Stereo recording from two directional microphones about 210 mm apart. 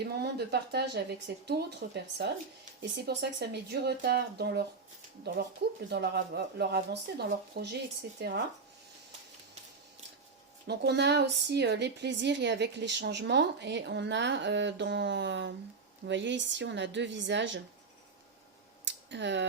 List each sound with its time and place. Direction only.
0.0 s speech: 50° right (ahead or behind)
5.9 s speech: 50° right (ahead or behind)
10.7 s speech: 50° right (ahead or behind)
18.9 s a sound: 55° right (ahead or behind)